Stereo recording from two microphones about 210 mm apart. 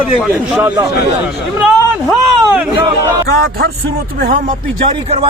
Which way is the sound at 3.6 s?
45° right (ahead or behind).